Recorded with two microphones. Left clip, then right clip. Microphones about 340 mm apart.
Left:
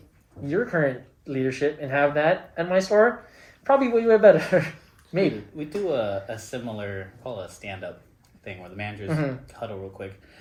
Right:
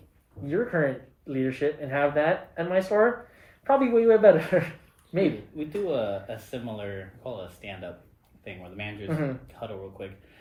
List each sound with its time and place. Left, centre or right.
0.4 s speech: left